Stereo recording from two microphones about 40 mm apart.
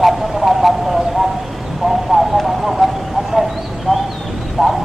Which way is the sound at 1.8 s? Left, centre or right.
Centre.